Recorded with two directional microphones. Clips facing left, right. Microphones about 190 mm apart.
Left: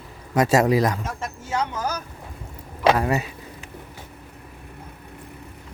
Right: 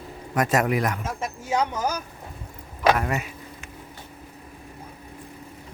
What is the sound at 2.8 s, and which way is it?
Speech, 30° left (ahead or behind).